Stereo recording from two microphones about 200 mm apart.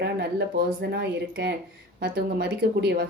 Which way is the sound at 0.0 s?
50° right (ahead or behind).